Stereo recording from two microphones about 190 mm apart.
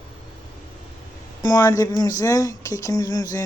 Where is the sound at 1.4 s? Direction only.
15° left (ahead or behind).